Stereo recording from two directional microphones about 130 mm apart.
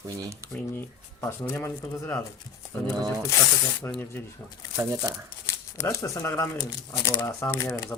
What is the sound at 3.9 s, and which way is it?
Speech, 20° left (ahead or behind).